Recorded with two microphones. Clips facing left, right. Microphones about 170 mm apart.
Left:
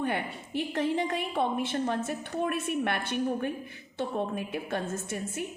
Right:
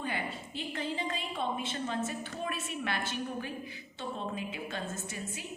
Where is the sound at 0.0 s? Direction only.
65° left (ahead or behind).